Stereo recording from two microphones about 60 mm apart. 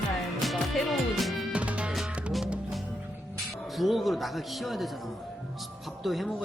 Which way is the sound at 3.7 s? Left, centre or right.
Centre.